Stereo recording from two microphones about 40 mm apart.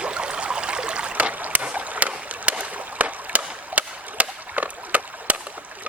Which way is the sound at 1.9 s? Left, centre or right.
Right.